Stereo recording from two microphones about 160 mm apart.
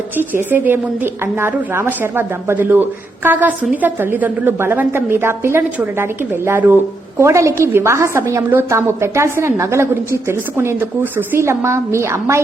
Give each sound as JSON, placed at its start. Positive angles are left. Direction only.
{"t": 0.2, "sound": "a woman's voice", "side_deg": -15}